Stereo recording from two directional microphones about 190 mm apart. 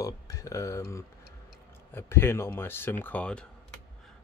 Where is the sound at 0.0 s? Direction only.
15° left (ahead or behind).